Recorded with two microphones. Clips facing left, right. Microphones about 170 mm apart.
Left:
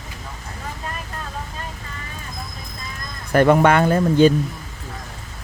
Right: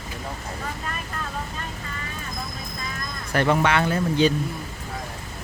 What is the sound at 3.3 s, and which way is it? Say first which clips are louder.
Speech: left 7 dB; 50° left (ahead or behind).